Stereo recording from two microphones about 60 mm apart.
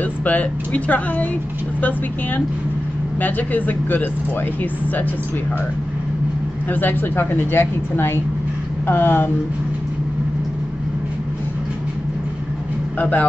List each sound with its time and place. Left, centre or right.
0.2 s speech: left
6.7 s speech: left
13.0 s speech: left